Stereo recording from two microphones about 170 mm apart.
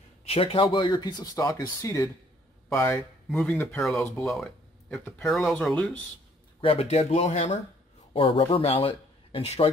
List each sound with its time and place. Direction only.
0.2 s speech: 35° left (ahead or behind); by 3.9 s 5° left (ahead or behind)
3.9 s speech: 15° left (ahead or behind)
4.3 s speech: centre (ahead or behind)
6.6 s speech: 35° left (ahead or behind)
8.1 s speech: 30° left (ahead or behind)